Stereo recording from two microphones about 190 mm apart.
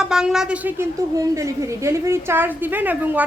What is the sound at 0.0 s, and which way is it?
A woman's voice, 5° right (ahead or behind).